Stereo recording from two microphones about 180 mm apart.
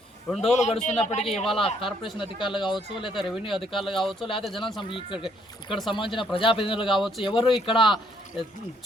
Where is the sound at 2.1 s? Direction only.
25° left (ahead or behind).